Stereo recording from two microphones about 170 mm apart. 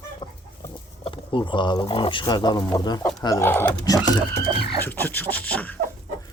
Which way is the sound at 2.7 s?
20° left (ahead or behind).